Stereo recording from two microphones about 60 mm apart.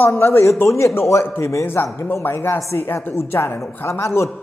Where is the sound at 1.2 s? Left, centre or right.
Left.